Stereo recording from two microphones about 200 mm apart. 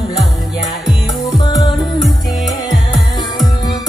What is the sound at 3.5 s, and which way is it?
Music, 20° left (ahead or behind).